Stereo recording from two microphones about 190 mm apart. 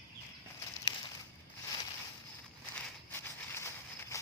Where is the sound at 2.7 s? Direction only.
10° left (ahead or behind).